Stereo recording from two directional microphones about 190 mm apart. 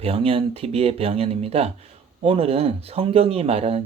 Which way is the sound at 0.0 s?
30° right (ahead or behind).